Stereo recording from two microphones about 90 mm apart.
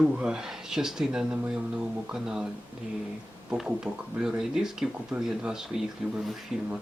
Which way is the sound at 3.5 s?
10° right (ahead or behind).